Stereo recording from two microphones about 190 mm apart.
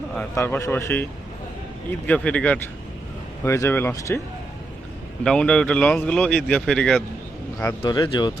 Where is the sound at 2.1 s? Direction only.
5° left (ahead or behind).